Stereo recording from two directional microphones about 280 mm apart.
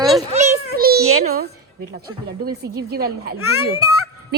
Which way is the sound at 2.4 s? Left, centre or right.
Right.